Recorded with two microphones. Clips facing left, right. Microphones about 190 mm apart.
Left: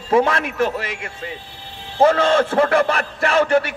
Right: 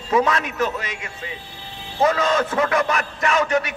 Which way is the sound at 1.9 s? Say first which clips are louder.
Left 4 dB; 30° left (ahead or behind).